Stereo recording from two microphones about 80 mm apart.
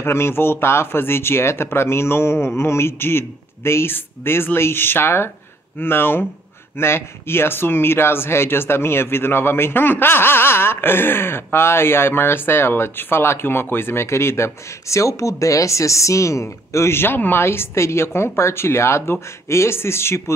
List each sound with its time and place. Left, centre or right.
0.0 s speech: left